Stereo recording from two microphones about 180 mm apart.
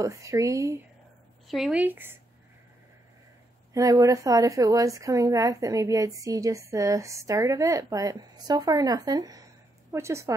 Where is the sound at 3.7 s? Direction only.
20° right (ahead or behind).